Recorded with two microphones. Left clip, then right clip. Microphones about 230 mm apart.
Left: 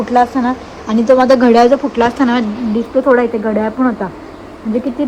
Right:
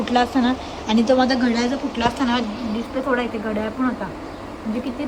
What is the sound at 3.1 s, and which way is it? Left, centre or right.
Speech, left.